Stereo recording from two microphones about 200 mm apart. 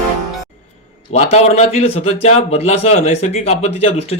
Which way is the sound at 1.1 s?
35° left (ahead or behind).